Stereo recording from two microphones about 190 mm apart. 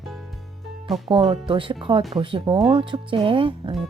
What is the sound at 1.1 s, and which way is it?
Speech, 25° right (ahead or behind).